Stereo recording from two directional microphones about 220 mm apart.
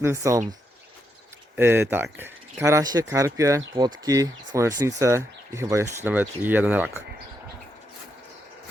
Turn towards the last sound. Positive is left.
turn(degrees=-5)  # may be behind; listen again after turning